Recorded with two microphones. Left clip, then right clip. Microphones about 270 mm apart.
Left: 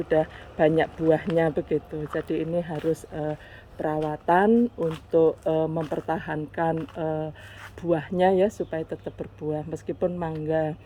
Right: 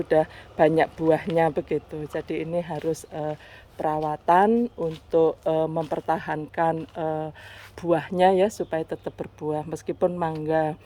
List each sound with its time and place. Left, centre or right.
0.1 s speech: centre